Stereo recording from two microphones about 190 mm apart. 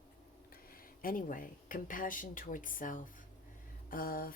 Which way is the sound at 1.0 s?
45° left (ahead or behind).